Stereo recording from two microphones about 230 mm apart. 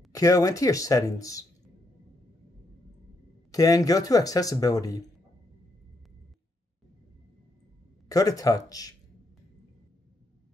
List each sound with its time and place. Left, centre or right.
0.1 s speech: centre
3.5 s speech: centre
8.1 s speech: centre